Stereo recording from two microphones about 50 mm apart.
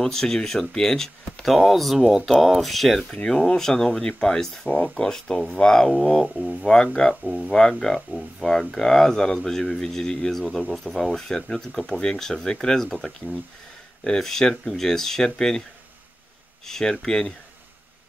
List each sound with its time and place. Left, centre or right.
0.0 s speech: centre
2.0 s speech: centre
2.4 s speech: centre
6.2 s speech: centre
6.6 s speech: centre
7.2 s speech: centre
7.5 s speech: centre
16.6 s speech: centre